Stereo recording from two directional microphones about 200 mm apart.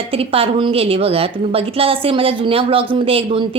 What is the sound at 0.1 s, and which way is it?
A woman's voice, 30° right (ahead or behind).